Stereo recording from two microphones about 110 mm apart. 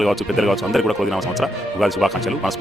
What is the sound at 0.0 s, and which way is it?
Speech, centre (ahead or behind).